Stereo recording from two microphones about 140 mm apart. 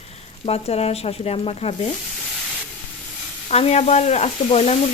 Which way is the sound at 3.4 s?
50° left (ahead or behind).